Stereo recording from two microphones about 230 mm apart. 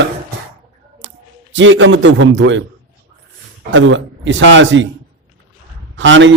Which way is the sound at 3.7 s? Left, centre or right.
Right.